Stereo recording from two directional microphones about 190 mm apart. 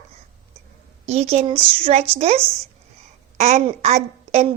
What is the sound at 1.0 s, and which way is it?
A woman's voice, 35° right (ahead or behind).